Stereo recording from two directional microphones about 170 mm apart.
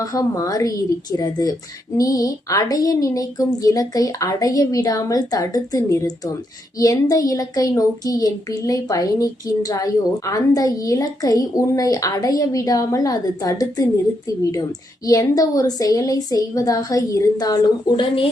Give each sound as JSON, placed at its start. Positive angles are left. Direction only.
{"t": 0.0, "sound": "a woman's voice", "side_deg": 20}
{"t": 15.0, "sound": "a woman's voice", "side_deg": 20}